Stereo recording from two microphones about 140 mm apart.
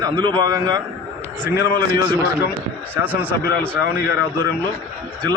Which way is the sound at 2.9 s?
15° right (ahead or behind).